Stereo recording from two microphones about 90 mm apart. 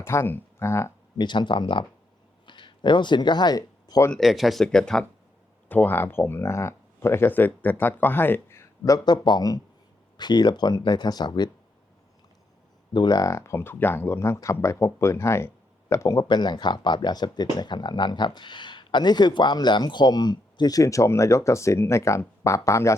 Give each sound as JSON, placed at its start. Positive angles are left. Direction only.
{"t": 0.0, "sound": "speech", "side_deg": 30}
{"t": 1.2, "sound": "speech", "side_deg": 60}
{"t": 4.2, "sound": "speech", "side_deg": 0}
{"t": 5.6, "sound": "speech", "side_deg": 20}
{"t": 8.8, "sound": "speech", "side_deg": 45}
{"t": 12.9, "sound": "speech", "side_deg": 50}
{"t": 13.3, "sound": "speech", "side_deg": 30}
{"t": 16.1, "sound": "speech", "side_deg": 55}